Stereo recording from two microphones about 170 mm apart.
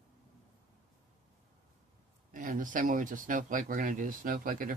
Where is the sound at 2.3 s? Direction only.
50° right (ahead or behind).